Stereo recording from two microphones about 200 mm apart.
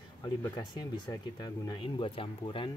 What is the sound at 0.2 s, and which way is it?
Speech, 20° left (ahead or behind).